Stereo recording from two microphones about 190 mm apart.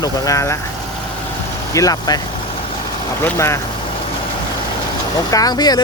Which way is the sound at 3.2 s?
15° left (ahead or behind).